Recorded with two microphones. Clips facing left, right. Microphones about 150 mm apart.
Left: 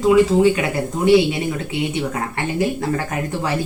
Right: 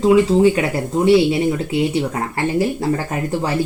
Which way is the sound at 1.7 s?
30° right (ahead or behind).